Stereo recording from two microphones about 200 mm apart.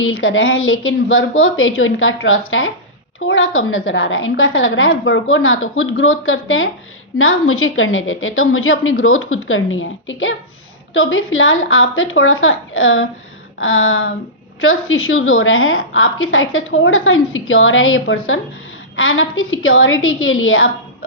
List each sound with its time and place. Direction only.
0.0 s a woman's voice: 80° left